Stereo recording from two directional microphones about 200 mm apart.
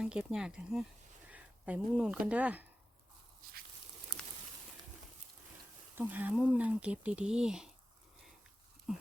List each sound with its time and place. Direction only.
0.0 s speech: 5° right (ahead or behind)
6.0 s speech: 10° right (ahead or behind)
8.9 s a sound: centre (ahead or behind)